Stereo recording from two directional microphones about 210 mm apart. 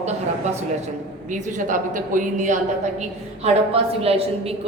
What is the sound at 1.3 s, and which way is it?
A woman's voice, 40° right (ahead or behind).